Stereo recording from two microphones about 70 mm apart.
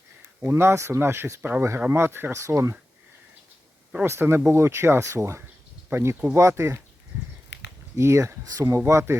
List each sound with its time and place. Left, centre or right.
0.5 s speech: right
1.4 s speech: right
1.9 s speech: right
4.0 s speech: right
7.9 s speech: right
8.8 s speech: right